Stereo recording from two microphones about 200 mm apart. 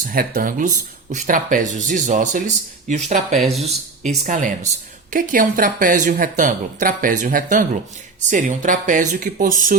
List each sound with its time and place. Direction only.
0.0 s speech: 45° right (ahead or behind)